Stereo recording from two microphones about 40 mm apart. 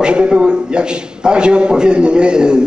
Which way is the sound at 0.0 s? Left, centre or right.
Right.